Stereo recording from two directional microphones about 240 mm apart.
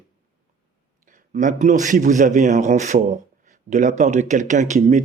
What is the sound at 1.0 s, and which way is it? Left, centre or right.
A man's voice, right.